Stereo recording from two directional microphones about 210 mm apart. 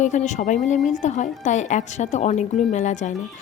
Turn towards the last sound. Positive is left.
turn(degrees=35)  # may be behind; listen again after turning